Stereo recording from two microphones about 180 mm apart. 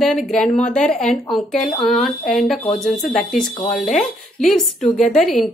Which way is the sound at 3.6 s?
45° left (ahead or behind).